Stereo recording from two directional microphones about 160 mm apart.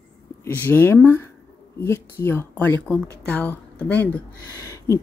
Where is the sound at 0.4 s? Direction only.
15° left (ahead or behind).